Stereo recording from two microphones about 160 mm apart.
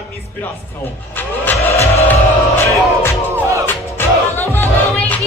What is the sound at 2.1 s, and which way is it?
Music, 15° left (ahead or behind).